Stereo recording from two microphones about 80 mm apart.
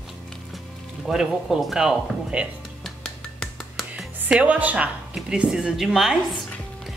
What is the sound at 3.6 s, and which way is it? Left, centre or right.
Music, centre.